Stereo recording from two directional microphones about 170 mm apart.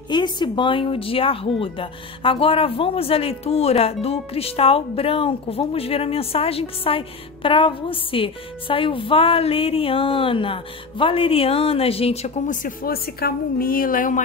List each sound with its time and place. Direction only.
0.1 s speech: 25° left (ahead or behind)
12.6 s a woman's voice: 60° left (ahead or behind)